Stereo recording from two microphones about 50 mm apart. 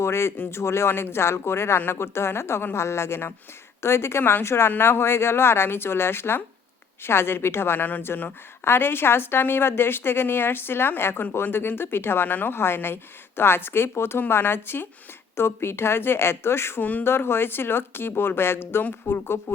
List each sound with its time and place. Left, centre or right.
0.0 s a woman's voice: left
4.2 s a woman's voice: left
4.4 s a woman's voice: left